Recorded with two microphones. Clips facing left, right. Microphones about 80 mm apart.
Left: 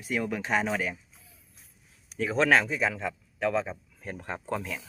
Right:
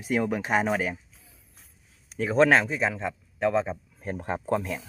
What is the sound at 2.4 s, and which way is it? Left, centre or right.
Speech, centre.